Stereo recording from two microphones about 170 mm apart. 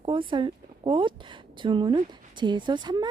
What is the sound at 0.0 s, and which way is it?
Speech, 30° right (ahead or behind).